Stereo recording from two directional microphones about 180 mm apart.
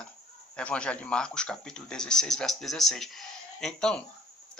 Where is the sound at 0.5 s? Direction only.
5° left (ahead or behind).